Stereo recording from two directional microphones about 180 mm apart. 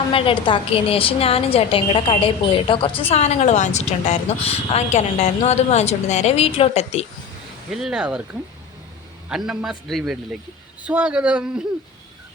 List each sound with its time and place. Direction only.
0.1 s speech: 30° left (ahead or behind)
7.7 s a man's voice: 5° right (ahead or behind)
9.3 s a man's voice: 5° right (ahead or behind)